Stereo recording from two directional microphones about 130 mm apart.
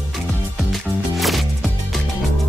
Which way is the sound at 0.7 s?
Centre (ahead or behind).